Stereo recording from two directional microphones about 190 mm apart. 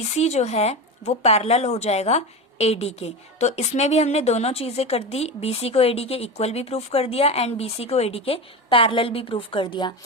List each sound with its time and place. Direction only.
0.0 s speech: 35° left (ahead or behind)